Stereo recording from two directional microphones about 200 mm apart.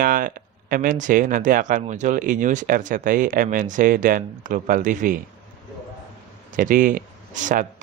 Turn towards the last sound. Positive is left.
turn(degrees=-40)  # may be behind; listen again after turning